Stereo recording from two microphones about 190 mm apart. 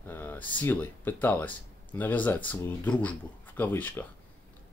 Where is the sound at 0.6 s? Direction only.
10° left (ahead or behind).